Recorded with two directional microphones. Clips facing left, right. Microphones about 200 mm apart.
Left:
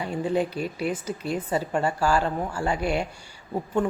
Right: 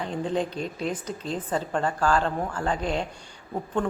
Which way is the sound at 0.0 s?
10° left (ahead or behind).